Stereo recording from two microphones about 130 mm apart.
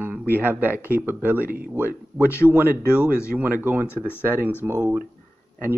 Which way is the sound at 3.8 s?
20° left (ahead or behind).